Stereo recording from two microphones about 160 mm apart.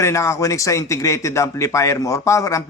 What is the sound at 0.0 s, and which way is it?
A man's voice, 20° left (ahead or behind).